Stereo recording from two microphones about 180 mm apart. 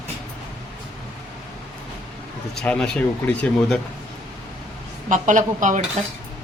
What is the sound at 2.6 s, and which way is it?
Speech, 5° left (ahead or behind).